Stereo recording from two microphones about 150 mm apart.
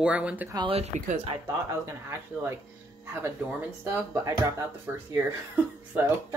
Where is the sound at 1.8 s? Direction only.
15° right (ahead or behind).